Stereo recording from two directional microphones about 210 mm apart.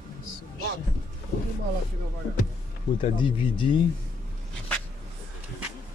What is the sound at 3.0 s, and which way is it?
Speech, 25° left (ahead or behind).